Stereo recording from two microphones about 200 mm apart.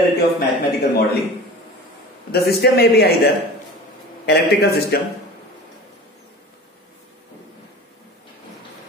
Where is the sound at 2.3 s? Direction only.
55° left (ahead or behind).